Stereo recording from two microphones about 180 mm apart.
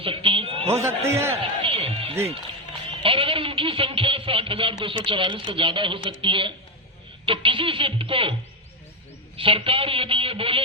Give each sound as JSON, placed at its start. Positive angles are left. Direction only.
{"t": 0.0, "sound": "a sound", "side_deg": -30}
{"t": 0.7, "sound": "a man's voice", "side_deg": -15}
{"t": 1.6, "sound": "music", "side_deg": -30}
{"t": 3.0, "sound": "speech", "side_deg": -30}